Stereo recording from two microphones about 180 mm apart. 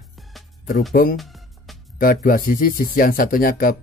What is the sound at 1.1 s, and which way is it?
Music, centre (ahead or behind).